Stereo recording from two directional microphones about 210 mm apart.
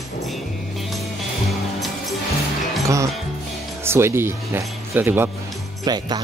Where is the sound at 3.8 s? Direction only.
10° right (ahead or behind).